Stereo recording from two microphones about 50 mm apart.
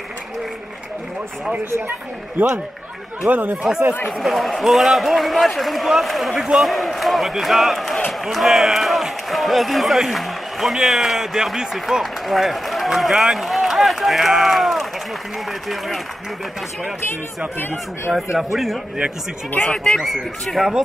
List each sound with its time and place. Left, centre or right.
3.3 s speech: right
4.2 s a man's voice: centre
6.4 s a man's voice: centre
6.7 s a man's voice: centre
17.6 s speech: left
18.1 s a man's voice: centre
19.6 s speech: centre
20.0 s a man's voice: centre